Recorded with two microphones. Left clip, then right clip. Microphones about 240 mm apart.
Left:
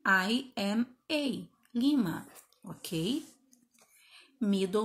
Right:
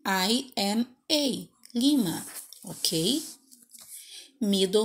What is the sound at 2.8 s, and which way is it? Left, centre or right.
Speech, left.